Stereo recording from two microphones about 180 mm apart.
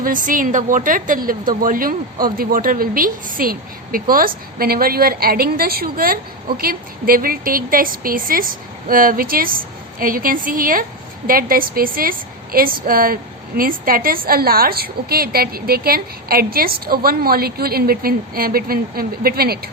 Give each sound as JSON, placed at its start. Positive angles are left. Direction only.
{"t": 0.0, "sound": "a woman's voice", "side_deg": -50}